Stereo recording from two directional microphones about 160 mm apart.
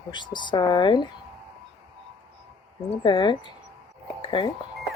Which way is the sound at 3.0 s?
30° left (ahead or behind).